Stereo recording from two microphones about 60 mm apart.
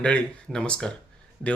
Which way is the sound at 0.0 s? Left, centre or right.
Centre.